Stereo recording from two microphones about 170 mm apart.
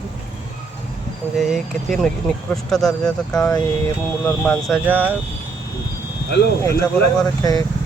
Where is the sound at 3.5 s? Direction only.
15° left (ahead or behind).